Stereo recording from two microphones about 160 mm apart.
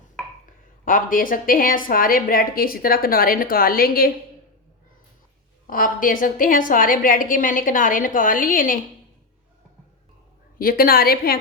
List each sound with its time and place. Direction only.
0.9 s a woman's voice: 60° left (ahead or behind)
5.6 s a woman's voice: 60° left (ahead or behind)
10.6 s a woman's voice: 65° left (ahead or behind)